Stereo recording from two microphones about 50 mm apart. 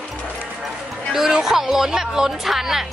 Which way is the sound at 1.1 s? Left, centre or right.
Centre.